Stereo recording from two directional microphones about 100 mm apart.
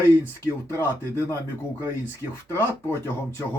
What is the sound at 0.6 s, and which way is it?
Speech, 25° left (ahead or behind).